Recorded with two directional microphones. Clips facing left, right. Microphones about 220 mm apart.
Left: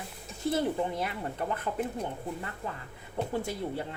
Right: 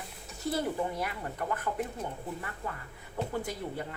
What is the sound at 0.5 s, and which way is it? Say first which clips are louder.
A woman's voice: left 2 dB; 25° left (ahead or behind).